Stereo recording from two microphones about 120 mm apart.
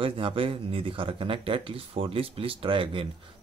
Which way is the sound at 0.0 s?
50° right (ahead or behind).